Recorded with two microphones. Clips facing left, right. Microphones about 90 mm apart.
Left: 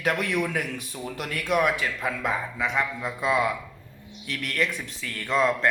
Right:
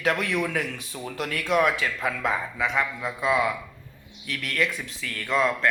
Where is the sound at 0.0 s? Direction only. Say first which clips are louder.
Even; 10° left (ahead or behind).